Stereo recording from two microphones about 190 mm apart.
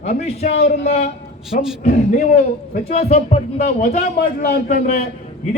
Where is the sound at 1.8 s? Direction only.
40° left (ahead or behind).